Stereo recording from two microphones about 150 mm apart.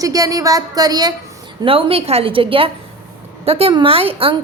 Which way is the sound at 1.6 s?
35° right (ahead or behind).